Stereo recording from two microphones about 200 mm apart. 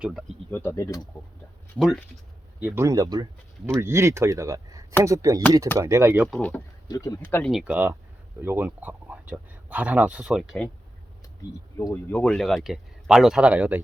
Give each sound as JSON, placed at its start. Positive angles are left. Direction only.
{"t": 0.0, "sound": "speech", "side_deg": 0}
{"t": 0.5, "sound": "speech", "side_deg": 10}
{"t": 1.8, "sound": "speech", "side_deg": 0}
{"t": 6.2, "sound": "speech", "side_deg": 0}
{"t": 6.8, "sound": "speech", "side_deg": 15}
{"t": 7.5, "sound": "speech", "side_deg": -5}
{"t": 11.8, "sound": "speech", "side_deg": 15}
{"t": 12.2, "sound": "speech", "side_deg": 0}